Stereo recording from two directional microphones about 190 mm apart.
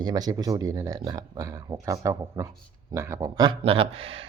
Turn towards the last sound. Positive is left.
turn(degrees=-30)  # may be behind; listen again after turning